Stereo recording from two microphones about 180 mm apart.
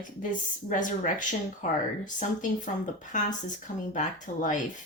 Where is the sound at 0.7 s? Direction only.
45° left (ahead or behind).